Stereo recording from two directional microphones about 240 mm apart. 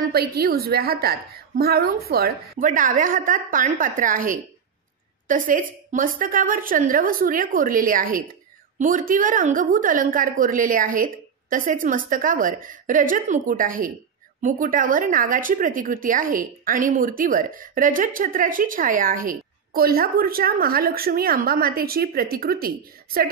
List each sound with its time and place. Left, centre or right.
0.1 s a woman's voice: right